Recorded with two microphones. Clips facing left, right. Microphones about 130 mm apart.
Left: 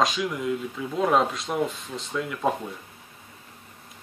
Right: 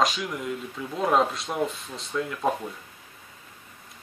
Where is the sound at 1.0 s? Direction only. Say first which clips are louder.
Left 1 dB; centre (ahead or behind).